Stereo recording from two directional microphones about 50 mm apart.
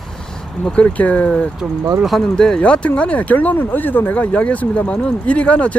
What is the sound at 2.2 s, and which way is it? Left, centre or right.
Speech, centre.